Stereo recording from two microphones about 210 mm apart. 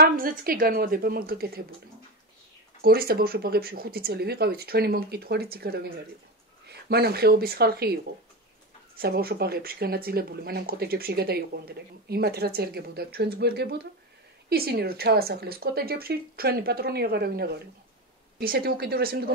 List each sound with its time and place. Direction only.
0.0 s speech: 45° right (ahead or behind)
2.8 s speech: 45° right (ahead or behind)
6.9 s speech: 50° right (ahead or behind)